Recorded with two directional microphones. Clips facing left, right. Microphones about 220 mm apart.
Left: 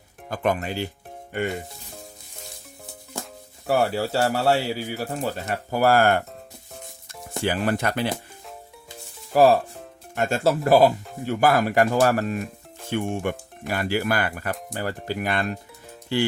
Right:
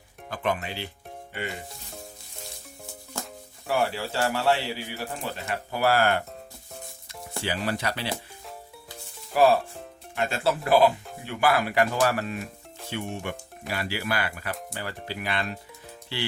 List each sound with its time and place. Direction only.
0.3 s speech: 45° left (ahead or behind)
3.7 s speech: 40° left (ahead or behind)
9.3 s speech: 40° left (ahead or behind)